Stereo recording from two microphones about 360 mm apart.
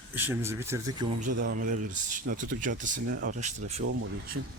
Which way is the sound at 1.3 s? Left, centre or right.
Right.